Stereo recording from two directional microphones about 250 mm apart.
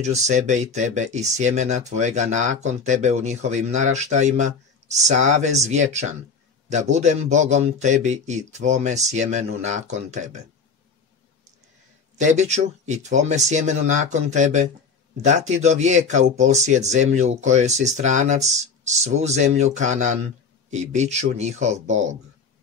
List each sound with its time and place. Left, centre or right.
0.0 s a man's voice: right
12.2 s a man's voice: right